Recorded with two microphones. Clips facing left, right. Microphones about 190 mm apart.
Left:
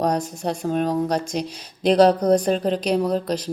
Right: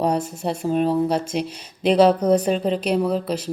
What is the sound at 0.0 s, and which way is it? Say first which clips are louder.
A woman's voice: right 1 dB; 5° right (ahead or behind).